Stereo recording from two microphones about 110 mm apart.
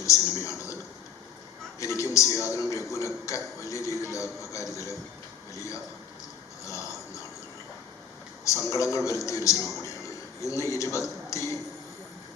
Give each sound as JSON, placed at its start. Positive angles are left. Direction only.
{"t": 0.0, "sound": "a sound", "side_deg": 30}
{"t": 1.8, "sound": "a man's voice", "side_deg": 30}
{"t": 8.4, "sound": "a man's voice", "side_deg": 30}